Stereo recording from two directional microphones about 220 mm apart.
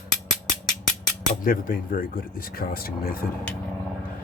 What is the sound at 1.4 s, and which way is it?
Speech, 40° left (ahead or behind).